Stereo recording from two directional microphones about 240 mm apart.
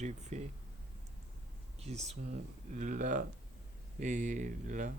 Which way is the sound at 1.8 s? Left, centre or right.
Right.